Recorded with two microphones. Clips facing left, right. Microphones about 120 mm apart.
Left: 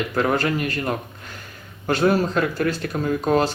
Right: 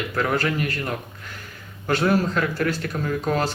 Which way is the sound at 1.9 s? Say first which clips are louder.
Left 2 dB; 20° left (ahead or behind).